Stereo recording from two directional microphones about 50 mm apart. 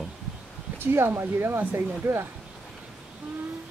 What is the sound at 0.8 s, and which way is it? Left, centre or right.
Speech, right.